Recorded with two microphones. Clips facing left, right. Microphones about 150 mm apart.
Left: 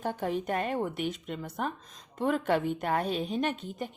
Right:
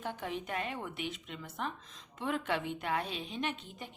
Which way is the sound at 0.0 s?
40° left (ahead or behind).